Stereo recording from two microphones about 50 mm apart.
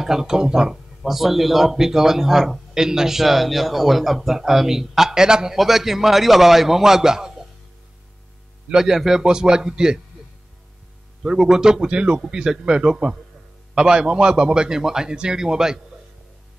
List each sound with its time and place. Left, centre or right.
0.0 s a man's voice: centre
8.7 s speech: centre
11.2 s speech: centre